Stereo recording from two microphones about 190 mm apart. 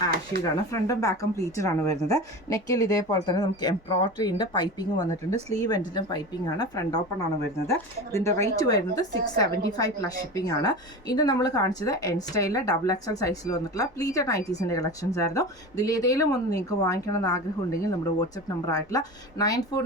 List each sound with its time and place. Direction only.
0.7 s a woman's voice: 15° left (ahead or behind)